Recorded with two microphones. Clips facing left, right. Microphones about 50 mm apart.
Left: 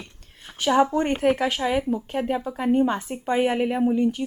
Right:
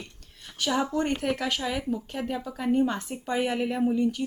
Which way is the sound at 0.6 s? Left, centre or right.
Left.